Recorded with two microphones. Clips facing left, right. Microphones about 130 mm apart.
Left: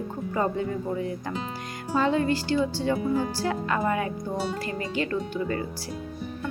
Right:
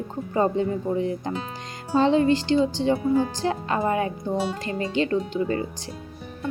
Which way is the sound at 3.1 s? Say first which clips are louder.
Right 4 dB; centre (ahead or behind).